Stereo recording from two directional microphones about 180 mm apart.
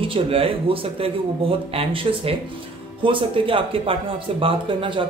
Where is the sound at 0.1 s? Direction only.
30° right (ahead or behind).